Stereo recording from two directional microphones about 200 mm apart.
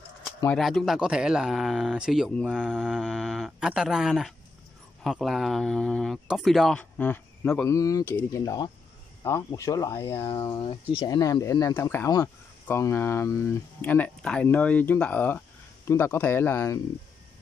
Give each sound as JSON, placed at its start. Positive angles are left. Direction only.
{"t": 0.6, "sound": "speech", "side_deg": 0}